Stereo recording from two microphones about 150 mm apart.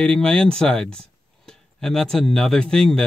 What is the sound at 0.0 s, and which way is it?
Speech, 5° left (ahead or behind).